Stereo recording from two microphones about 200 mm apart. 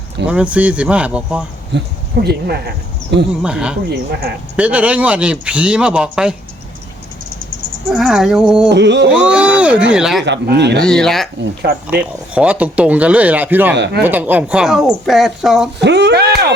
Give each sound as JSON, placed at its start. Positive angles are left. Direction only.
{"t": 0.3, "sound": "speech", "side_deg": -5}
{"t": 1.7, "sound": "speech", "side_deg": -60}
{"t": 3.4, "sound": "speech", "side_deg": -5}
{"t": 3.8, "sound": "speech", "side_deg": -50}
{"t": 4.5, "sound": "speech", "side_deg": -5}
{"t": 7.9, "sound": "speech", "side_deg": 0}
{"t": 8.7, "sound": "speech", "side_deg": -60}
{"t": 9.0, "sound": "speech", "side_deg": -5}
{"t": 10.2, "sound": "speech", "side_deg": -55}
{"t": 10.8, "sound": "speech", "side_deg": 5}
{"t": 13.7, "sound": "speech", "side_deg": -60}
{"t": 14.0, "sound": "speech", "side_deg": -10}
{"t": 15.8, "sound": "a sound", "side_deg": -60}